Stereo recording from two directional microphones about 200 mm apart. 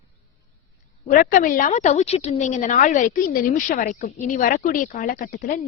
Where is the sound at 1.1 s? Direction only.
45° left (ahead or behind).